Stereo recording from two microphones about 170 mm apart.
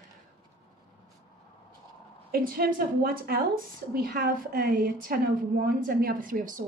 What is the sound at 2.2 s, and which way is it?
A woman's voice, 60° right (ahead or behind).